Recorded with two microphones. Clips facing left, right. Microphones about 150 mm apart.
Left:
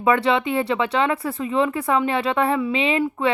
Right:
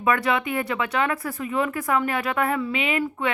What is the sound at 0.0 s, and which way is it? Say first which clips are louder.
Speech: left 4 dB; 30° left (ahead or behind).